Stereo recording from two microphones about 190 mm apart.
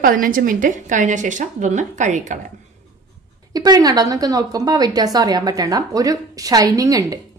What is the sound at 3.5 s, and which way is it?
A woman's voice, 20° right (ahead or behind).